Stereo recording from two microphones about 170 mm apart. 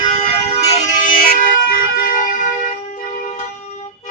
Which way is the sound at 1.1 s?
55° left (ahead or behind).